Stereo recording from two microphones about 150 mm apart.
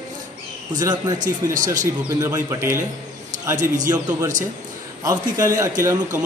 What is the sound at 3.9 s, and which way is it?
A man's voice, 25° right (ahead or behind).